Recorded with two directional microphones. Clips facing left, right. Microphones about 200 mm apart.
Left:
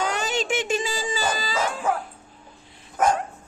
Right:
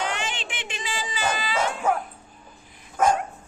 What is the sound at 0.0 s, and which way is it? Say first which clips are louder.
Dog: left 4 dB; 40° left (ahead or behind).